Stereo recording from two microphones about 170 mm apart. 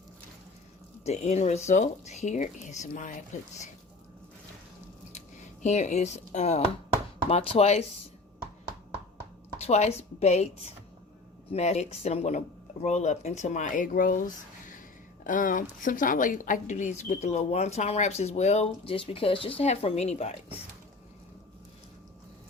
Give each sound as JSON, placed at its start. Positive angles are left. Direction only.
{"t": 1.0, "sound": "speech", "side_deg": 40}
{"t": 5.6, "sound": "a woman's voice", "side_deg": 45}
{"t": 9.6, "sound": "a woman's voice", "side_deg": 40}